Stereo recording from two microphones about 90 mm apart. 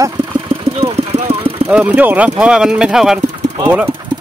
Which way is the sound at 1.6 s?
15° right (ahead or behind).